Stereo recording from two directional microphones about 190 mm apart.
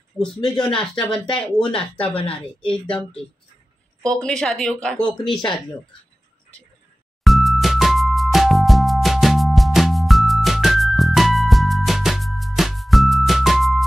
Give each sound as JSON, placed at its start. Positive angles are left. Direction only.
{"t": 0.2, "sound": "speech", "side_deg": 5}
{"t": 1.6, "sound": "a woman's voice", "side_deg": 30}
{"t": 4.0, "sound": "speech", "side_deg": 5}
{"t": 7.2, "sound": "music", "side_deg": 0}